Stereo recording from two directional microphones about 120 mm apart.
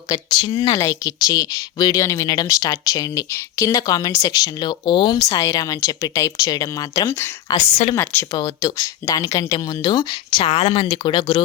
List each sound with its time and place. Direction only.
0.1 s a woman's voice: 30° left (ahead or behind)
0.4 s speech: 45° left (ahead or behind)
0.8 s a woman's voice: 30° left (ahead or behind)
7.7 s speech: 60° left (ahead or behind)
7.9 s speech: 20° left (ahead or behind)
8.3 s a woman's voice: 30° left (ahead or behind)